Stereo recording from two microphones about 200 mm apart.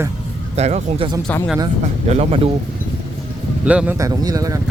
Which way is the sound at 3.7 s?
5° right (ahead or behind).